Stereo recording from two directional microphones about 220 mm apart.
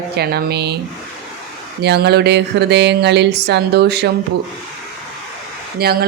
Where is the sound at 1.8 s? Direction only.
50° right (ahead or behind).